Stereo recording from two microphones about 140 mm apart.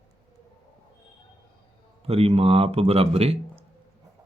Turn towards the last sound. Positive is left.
turn(degrees=-45)  # may be behind; listen again after turning